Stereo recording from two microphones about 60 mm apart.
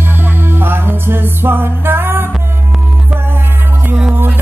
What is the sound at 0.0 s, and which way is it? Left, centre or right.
Music, right.